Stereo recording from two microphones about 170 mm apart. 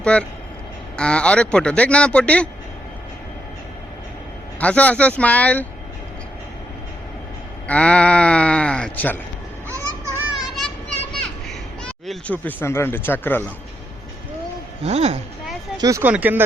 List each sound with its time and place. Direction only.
0.0 s speech: 5° left (ahead or behind)
4.6 s speech: 10° left (ahead or behind)
7.7 s speech: 5° left (ahead or behind)
10.3 s children playing: centre (ahead or behind)
11.1 s a sound: 5° left (ahead or behind)
14.8 s speech: 40° right (ahead or behind)
15.8 s speech: 15° right (ahead or behind)